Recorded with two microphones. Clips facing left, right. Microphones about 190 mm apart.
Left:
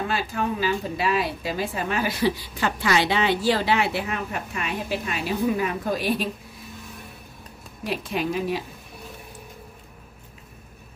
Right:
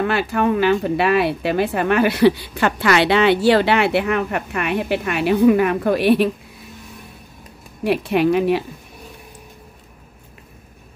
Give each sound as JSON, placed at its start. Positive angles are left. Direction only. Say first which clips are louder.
{"t": 0.0, "sound": "speech", "louder": "right 8 dB", "side_deg": -65}
{"t": 7.8, "sound": "speech", "louder": "right 10 dB", "side_deg": -65}